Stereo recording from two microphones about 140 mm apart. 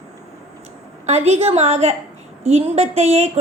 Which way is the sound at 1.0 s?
50° right (ahead or behind).